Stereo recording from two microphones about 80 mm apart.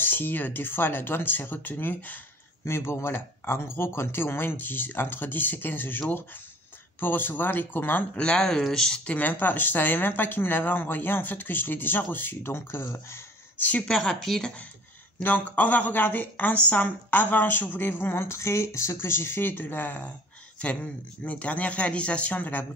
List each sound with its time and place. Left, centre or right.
0.0 s speech: left
2.6 s speech: left
8.2 s speech: centre; by 13.7 s left
13.8 s speech: centre
15.2 s speech: left